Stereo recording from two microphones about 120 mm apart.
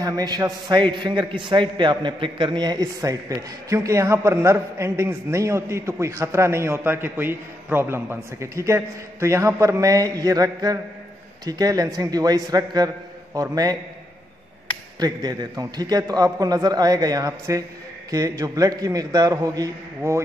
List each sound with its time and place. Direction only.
0.0 s a man's voice: 30° right (ahead or behind)
15.0 s a man's voice: 35° right (ahead or behind)